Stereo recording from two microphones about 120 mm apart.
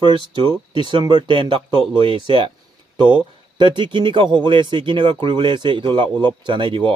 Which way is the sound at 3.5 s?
40° right (ahead or behind).